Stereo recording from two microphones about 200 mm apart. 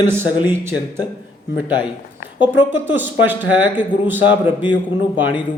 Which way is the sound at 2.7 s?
10° right (ahead or behind).